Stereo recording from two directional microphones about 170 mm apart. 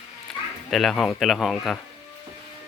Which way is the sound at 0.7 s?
Centre (ahead or behind).